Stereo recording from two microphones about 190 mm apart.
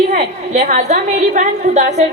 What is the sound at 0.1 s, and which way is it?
A woman's voice, 40° right (ahead or behind).